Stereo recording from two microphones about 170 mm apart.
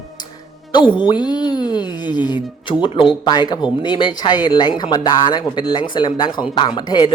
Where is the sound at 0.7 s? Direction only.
30° left (ahead or behind).